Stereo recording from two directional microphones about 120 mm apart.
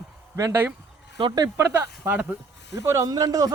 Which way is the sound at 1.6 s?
25° right (ahead or behind).